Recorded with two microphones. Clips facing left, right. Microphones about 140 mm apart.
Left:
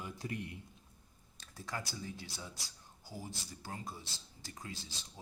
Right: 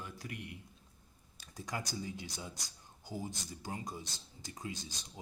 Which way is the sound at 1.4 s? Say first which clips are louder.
Right 2 dB; 15° right (ahead or behind).